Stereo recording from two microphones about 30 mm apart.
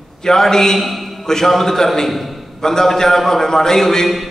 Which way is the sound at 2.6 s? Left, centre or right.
Centre.